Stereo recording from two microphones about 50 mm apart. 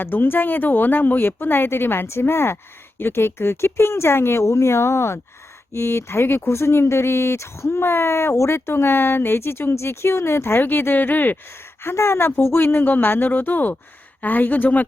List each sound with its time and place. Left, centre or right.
0.0 s speech: left
10.6 s speech: left
11.8 s speech: left